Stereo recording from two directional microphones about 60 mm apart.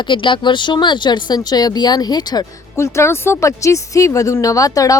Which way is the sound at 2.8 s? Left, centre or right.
Left.